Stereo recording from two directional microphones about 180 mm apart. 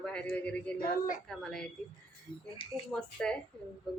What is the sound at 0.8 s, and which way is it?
Speech, 50° left (ahead or behind).